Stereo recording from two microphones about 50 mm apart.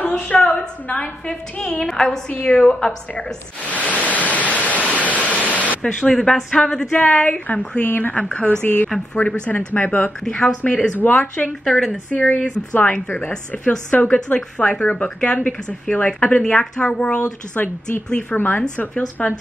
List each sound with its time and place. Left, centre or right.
0.1 s a woman's voice: left
3.7 s waves: left
5.8 s speech: centre
6.1 s a woman's voice: centre
6.5 s speech: centre; by 8.2 s left
8.2 s speech: left
8.6 s speech: left
9.1 s speech: left
10.9 s speech: left
11.6 s a woman's voice: centre
12.1 s speech: centre
16.5 s a woman's voice: centre
17.6 s speech: left
18.9 s speech: left